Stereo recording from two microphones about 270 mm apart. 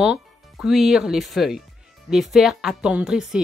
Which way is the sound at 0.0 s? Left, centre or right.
Centre.